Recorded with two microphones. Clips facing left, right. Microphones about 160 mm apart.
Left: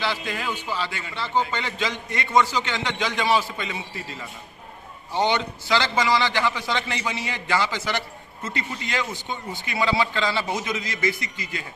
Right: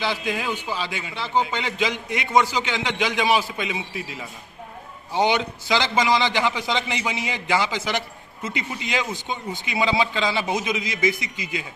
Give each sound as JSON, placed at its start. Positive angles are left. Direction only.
{"t": 0.0, "sound": "a man's voice", "side_deg": -15}
{"t": 5.1, "sound": "a man's voice", "side_deg": -15}